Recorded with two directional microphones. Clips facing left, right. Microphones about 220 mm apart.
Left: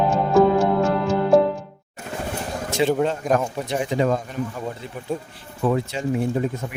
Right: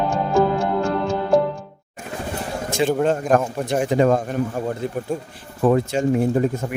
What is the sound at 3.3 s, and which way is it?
Speech, centre (ahead or behind).